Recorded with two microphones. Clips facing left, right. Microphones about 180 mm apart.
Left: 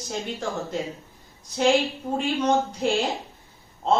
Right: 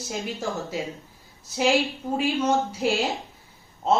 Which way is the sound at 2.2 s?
5° right (ahead or behind).